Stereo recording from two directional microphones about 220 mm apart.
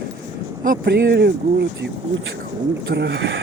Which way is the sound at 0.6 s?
45° right (ahead or behind).